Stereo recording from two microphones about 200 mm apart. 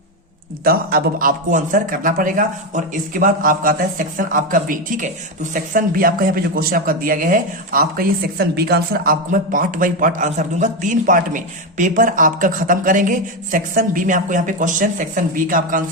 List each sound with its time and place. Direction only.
0.6 s a man's voice: 50° right (ahead or behind)